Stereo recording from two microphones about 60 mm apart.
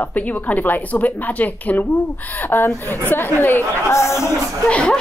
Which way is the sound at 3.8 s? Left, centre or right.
Left.